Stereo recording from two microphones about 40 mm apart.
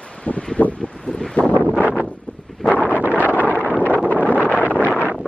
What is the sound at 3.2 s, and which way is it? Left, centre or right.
Wind noise, right.